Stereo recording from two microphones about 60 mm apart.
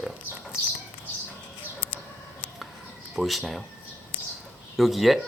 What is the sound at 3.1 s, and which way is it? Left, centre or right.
Speech, centre.